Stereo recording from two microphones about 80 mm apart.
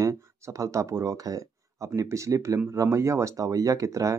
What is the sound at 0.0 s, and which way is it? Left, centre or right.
Speech, right.